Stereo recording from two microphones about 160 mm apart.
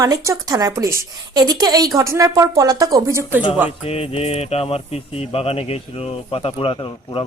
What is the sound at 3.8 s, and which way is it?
Speech, 40° left (ahead or behind).